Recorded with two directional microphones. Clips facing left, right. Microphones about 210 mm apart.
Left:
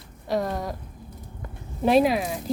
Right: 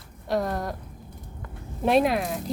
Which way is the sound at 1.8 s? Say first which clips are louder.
Left 2 dB; centre (ahead or behind).